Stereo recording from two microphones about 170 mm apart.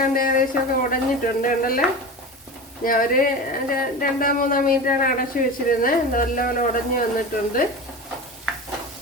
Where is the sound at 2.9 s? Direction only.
55° left (ahead or behind).